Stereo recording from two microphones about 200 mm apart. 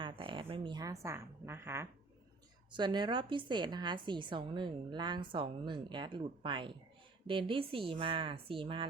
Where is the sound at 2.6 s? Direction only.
20° right (ahead or behind).